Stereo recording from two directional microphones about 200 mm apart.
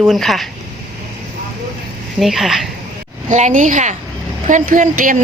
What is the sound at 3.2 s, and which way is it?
A woman's voice, 35° right (ahead or behind).